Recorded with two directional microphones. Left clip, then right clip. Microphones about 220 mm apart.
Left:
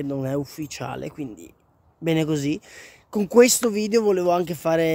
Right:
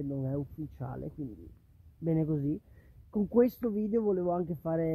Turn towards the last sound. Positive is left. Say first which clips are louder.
# left 11 dB
turn(degrees=25)  # may be behind; listen again after turning